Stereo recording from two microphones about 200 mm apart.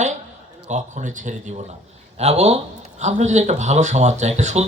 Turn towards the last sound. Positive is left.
turn(degrees=-35)  # may be behind; listen again after turning